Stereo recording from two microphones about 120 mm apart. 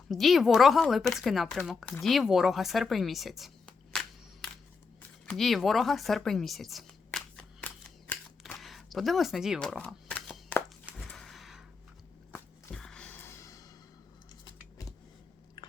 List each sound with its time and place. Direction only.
0.1 s speech: centre (ahead or behind)
5.2 s speech: 5° left (ahead or behind)
8.1 s camera: 10° left (ahead or behind)
8.5 s shuffling cards: centre (ahead or behind)
10.9 s a sound: 5° left (ahead or behind)
12.7 s music: 5° left (ahead or behind); by 13.7 s 25° left (ahead or behind)
14.4 s keys jangling: 30° left (ahead or behind)